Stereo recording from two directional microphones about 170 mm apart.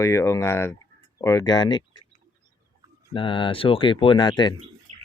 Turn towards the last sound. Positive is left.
turn(degrees=25)  # may be behind; listen again after turning